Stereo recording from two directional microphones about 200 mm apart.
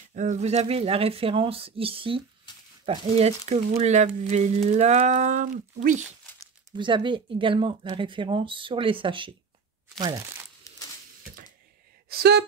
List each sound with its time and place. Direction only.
0.1 s speech: 40° right (ahead or behind)
6.4 s speech: 25° right (ahead or behind)
12.1 s speech: 55° right (ahead or behind)